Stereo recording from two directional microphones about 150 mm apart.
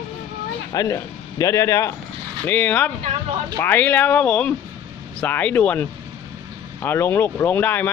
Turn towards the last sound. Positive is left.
turn(degrees=15)  # may be behind; listen again after turning